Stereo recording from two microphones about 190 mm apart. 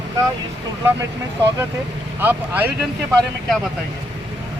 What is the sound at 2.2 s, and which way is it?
Speech, 10° right (ahead or behind).